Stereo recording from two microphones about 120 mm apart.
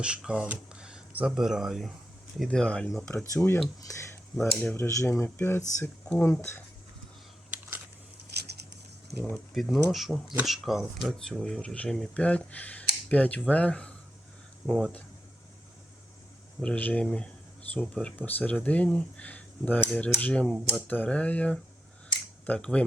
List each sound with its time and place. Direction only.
0.0 s speech: 10° right (ahead or behind)
3.3 s speech: 20° left (ahead or behind)
4.5 s speech: 15° left (ahead or behind)
4.9 s speech: 25° left (ahead or behind)
9.3 s speech: centre (ahead or behind)
16.6 s speech: 10° left (ahead or behind)